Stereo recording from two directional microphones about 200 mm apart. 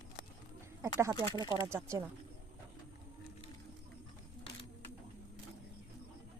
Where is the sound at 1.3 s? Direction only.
20° right (ahead or behind).